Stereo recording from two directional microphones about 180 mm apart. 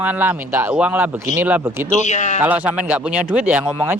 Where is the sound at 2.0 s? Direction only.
40° left (ahead or behind).